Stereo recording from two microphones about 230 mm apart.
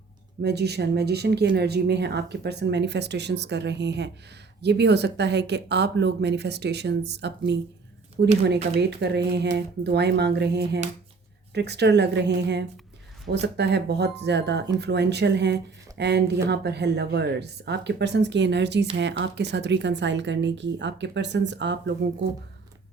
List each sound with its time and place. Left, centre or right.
0.4 s speech: right